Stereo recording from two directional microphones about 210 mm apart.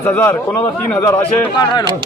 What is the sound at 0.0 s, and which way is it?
A man's voice, 10° left (ahead or behind).